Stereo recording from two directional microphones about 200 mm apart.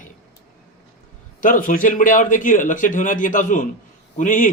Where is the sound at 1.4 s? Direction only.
40° left (ahead or behind).